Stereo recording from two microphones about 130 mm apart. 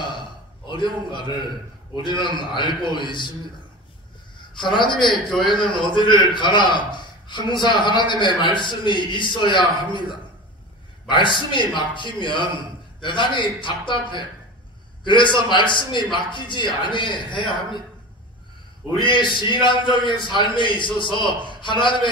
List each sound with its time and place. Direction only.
0.7 s a man's voice: 35° left (ahead or behind)
4.6 s a man's voice: 35° left (ahead or behind)
4.9 s a man's voice: centre (ahead or behind)
5.9 s a man's voice: 35° left (ahead or behind)
11.1 s a man's voice: 40° left (ahead or behind)
18.9 s a man's voice: 40° left (ahead or behind)